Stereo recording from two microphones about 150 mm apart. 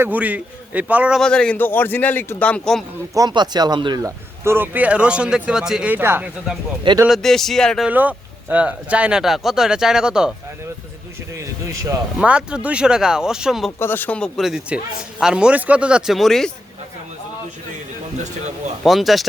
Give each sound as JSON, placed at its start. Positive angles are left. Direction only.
{"t": 0.0, "sound": "speech", "side_deg": -10}
{"t": 1.2, "sound": "a man's voice", "side_deg": 5}
{"t": 3.2, "sound": "speech", "side_deg": -30}
{"t": 7.1, "sound": "speech", "side_deg": 0}
{"t": 7.9, "sound": "speech", "side_deg": -10}
{"t": 11.3, "sound": "speech", "side_deg": -20}
{"t": 12.2, "sound": "speech", "side_deg": -5}
{"t": 13.7, "sound": "a man's voice", "side_deg": 15}
{"t": 18.8, "sound": "speech", "side_deg": 0}